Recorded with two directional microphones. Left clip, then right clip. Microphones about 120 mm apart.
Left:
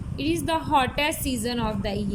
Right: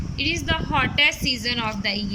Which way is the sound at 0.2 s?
45° left (ahead or behind).